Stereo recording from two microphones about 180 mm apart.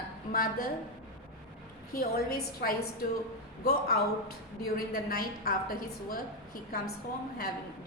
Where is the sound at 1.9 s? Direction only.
60° left (ahead or behind).